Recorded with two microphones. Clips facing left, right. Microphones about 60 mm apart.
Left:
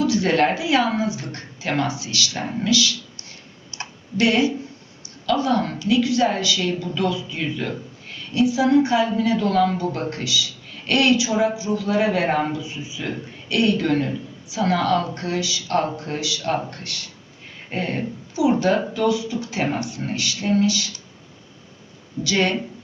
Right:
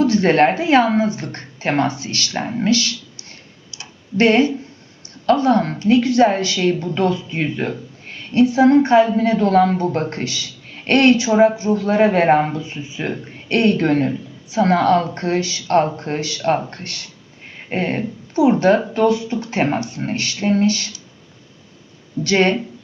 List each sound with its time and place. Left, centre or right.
0.0 s a woman's voice: right
4.2 s a woman's voice: right
22.2 s a woman's voice: right